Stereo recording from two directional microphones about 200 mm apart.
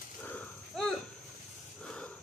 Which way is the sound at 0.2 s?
10° left (ahead or behind).